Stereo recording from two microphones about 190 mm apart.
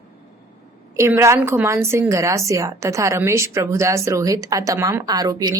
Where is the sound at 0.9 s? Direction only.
15° right (ahead or behind).